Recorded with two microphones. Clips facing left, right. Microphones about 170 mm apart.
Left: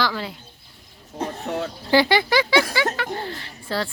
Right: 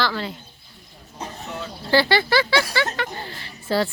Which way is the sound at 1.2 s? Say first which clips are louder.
Left 6 dB; 60° left (ahead or behind).